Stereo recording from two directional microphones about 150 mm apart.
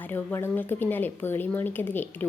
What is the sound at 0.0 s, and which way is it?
A woman's voice, 10° left (ahead or behind).